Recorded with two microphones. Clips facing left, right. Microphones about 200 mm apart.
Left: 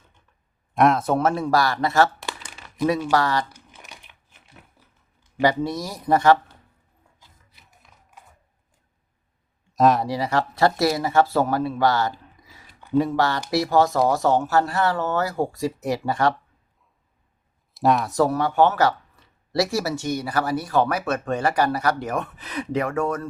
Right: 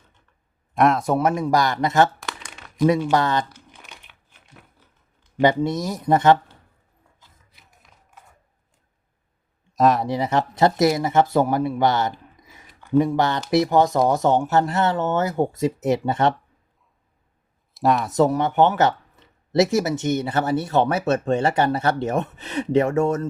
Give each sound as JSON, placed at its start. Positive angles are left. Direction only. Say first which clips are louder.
{"t": 0.7, "sound": "speech", "louder": "even", "side_deg": 0}
{"t": 1.0, "sound": "speech", "louder": "right 1 dB", "side_deg": -15}
{"t": 2.2, "sound": "crumpling", "louder": "even", "side_deg": 5}
{"t": 2.8, "sound": "speech", "louder": "right 2 dB", "side_deg": -20}
{"t": 5.4, "sound": "speech", "louder": "right 3 dB", "side_deg": -20}
{"t": 9.7, "sound": "speech", "louder": "even", "side_deg": 0}
{"t": 10.1, "sound": "speech", "louder": "right 2 dB", "side_deg": -20}
{"t": 17.7, "sound": "speech", "louder": "even", "side_deg": 0}
{"t": 18.1, "sound": "speech", "louder": "right 2 dB", "side_deg": -20}